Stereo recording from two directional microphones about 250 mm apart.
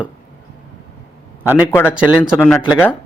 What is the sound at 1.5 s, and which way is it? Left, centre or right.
A man's voice, centre.